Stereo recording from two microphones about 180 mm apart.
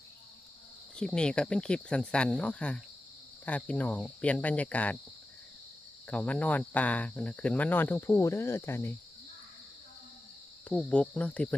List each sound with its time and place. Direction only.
0.9 s speech: 5° left (ahead or behind)
6.1 s speech: 5° left (ahead or behind)
10.7 s speech: 5° left (ahead or behind)